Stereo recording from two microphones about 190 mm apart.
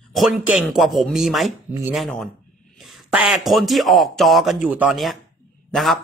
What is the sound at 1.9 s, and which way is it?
Speech, centre (ahead or behind).